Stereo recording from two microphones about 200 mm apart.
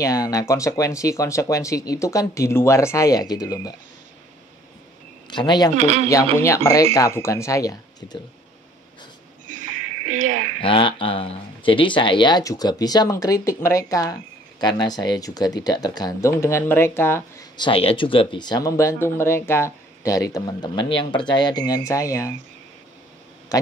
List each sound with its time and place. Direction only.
0.0 s speech: 15° left (ahead or behind)
5.3 s speech: 20° left (ahead or behind)
5.8 s speech: 35° right (ahead or behind)
6.3 s speech: 15° left (ahead or behind)
9.5 s a sound: 40° right (ahead or behind)
10.6 s speech: 25° left (ahead or behind)
17.6 s speech: 25° left (ahead or behind)